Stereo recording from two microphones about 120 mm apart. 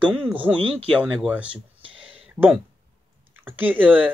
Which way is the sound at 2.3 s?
15° right (ahead or behind).